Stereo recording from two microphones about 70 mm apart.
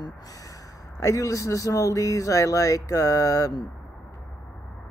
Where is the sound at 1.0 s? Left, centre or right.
Left.